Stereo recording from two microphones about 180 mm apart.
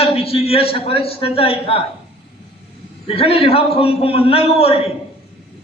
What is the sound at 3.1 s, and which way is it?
A man's voice, 30° left (ahead or behind).